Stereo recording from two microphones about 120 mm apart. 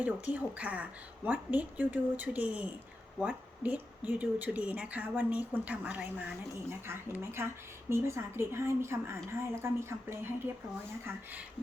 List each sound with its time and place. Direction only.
0.0 s a woman's voice: 10° right (ahead or behind)